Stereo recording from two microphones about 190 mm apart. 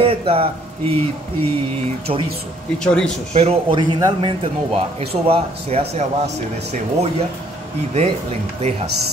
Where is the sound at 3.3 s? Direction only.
30° right (ahead or behind).